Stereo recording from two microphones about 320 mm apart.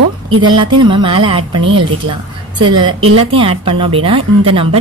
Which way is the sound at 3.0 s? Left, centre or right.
Right.